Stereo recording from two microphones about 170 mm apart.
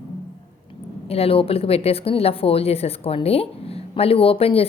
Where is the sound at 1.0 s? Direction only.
35° left (ahead or behind).